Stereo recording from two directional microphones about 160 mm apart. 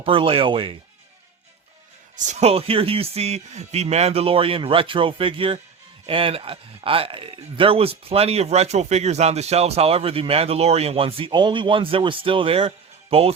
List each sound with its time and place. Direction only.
0.0 s speech: 35° right (ahead or behind)
2.1 s speech: 45° right (ahead or behind)